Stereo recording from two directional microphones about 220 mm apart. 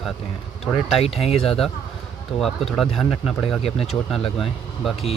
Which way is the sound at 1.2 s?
Centre (ahead or behind).